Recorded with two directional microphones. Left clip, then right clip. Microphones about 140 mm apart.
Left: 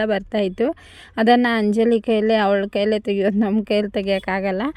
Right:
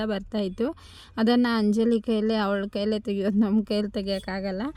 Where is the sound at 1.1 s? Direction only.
20° left (ahead or behind).